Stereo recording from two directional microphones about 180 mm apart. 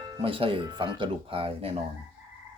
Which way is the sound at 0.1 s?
30° right (ahead or behind).